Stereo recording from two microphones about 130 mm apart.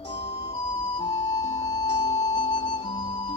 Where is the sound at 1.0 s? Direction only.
30° left (ahead or behind).